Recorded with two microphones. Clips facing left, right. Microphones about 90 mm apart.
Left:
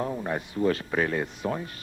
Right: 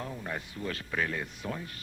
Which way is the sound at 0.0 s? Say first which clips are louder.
Left 8 dB; 35° left (ahead or behind).